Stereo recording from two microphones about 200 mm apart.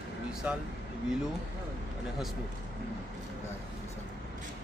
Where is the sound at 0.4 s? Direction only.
10° right (ahead or behind).